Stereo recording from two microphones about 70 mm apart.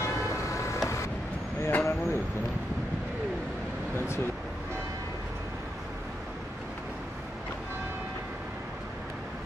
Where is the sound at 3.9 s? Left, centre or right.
Left.